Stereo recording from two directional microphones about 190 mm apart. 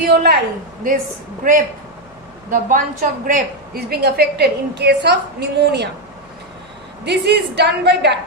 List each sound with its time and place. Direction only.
0.1 s a woman's voice: 60° right (ahead or behind)
1.5 s a woman's voice: 45° right (ahead or behind); by 5.9 s 60° right (ahead or behind)
7.0 s a woman's voice: 60° right (ahead or behind)